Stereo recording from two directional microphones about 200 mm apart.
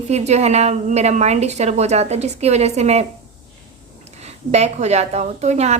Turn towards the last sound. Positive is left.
turn(degrees=-35)  # may be behind; listen again after turning